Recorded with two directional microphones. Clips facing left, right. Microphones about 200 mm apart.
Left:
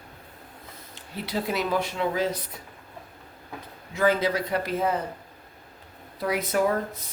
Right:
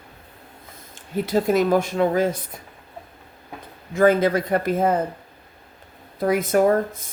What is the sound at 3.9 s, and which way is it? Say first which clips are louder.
Speech: right 6 dB; 50° right (ahead or behind).